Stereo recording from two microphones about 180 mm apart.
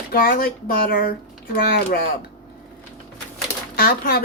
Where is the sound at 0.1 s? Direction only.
55° left (ahead or behind).